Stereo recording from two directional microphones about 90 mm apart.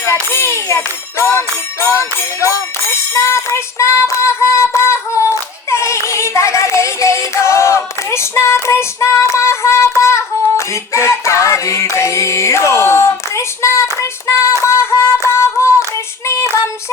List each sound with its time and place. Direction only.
0.0 s a child's voice: 30° left (ahead or behind)
1.2 s jingle bell: 30° left (ahead or behind)
10.0 s a sound: 30° left (ahead or behind)
10.9 s music: 30° left (ahead or behind)
16.2 s female singing: 30° left (ahead or behind)